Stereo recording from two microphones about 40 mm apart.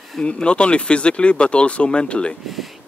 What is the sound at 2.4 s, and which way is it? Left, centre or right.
Speech, centre.